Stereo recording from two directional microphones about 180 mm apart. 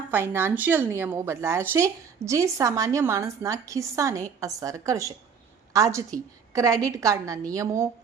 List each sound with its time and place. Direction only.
0.1 s a woman's voice: 10° right (ahead or behind)